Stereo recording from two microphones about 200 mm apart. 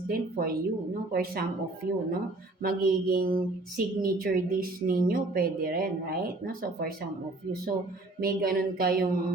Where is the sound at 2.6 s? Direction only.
45° right (ahead or behind).